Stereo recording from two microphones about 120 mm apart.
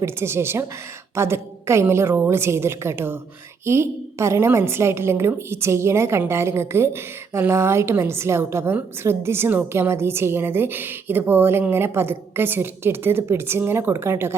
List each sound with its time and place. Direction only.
0.0 s a woman's voice: 20° right (ahead or behind)